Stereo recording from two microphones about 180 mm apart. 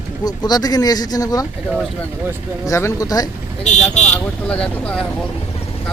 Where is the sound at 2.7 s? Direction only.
15° left (ahead or behind).